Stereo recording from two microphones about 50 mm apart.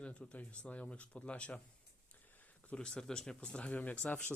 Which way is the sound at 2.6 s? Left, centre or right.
Centre.